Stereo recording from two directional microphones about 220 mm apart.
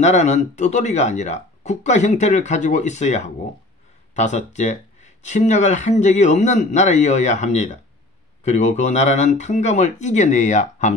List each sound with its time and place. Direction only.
0.0 s speech: 30° left (ahead or behind)